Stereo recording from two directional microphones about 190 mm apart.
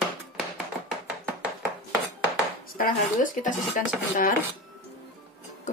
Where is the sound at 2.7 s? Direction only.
45° left (ahead or behind).